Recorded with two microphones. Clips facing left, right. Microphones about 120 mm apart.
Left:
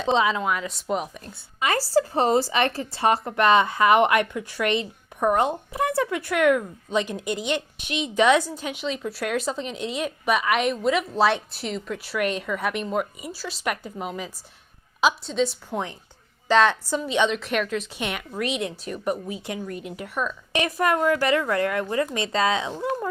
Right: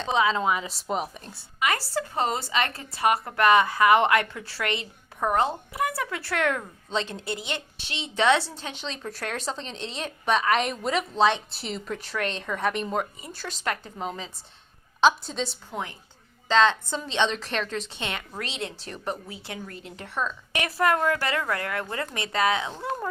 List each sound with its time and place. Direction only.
0.1 s a woman's voice: 20° left (ahead or behind)
0.3 s a woman's voice: 5° right (ahead or behind)
1.5 s a woman's voice: 30° left (ahead or behind); by 11.1 s centre (ahead or behind)
11.2 s a woman's voice: 20° right (ahead or behind)
11.5 s a woman's voice: centre (ahead or behind)
15.7 s speech: 15° left (ahead or behind)
16.5 s a woman's voice: 20° right (ahead or behind)
17.1 s a woman's voice: 10° left (ahead or behind)
17.7 s a woman's voice: 25° right (ahead or behind)
18.4 s speech: 15° left (ahead or behind)
20.5 s a woman's voice: 20° left (ahead or behind)